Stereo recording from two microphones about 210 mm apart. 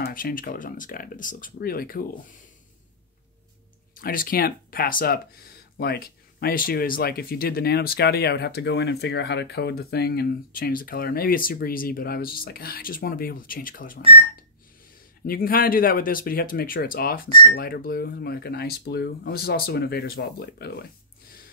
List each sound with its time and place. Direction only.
0.0 s speech: 40° left (ahead or behind)
3.9 s speech: 40° left (ahead or behind)
15.2 s speech: 45° left (ahead or behind)